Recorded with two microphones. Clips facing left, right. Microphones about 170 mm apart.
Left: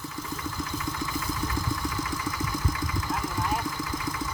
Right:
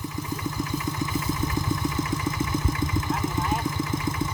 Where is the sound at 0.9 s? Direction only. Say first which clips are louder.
Right 4 dB; 20° right (ahead or behind).